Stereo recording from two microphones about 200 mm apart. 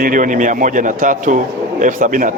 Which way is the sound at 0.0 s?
40° right (ahead or behind).